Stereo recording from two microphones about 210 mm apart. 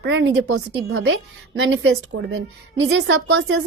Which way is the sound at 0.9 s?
80° right.